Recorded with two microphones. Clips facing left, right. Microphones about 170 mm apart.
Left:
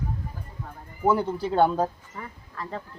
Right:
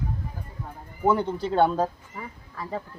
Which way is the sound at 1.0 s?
5° left (ahead or behind).